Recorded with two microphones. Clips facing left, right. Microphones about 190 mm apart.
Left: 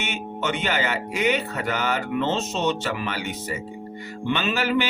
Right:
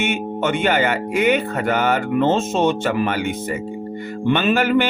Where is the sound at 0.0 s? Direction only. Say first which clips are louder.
Right 7 dB; 50° right (ahead or behind).